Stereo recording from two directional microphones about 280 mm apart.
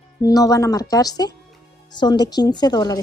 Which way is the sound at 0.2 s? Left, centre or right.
Centre.